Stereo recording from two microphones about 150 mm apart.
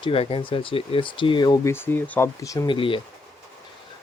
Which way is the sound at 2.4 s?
20° left (ahead or behind).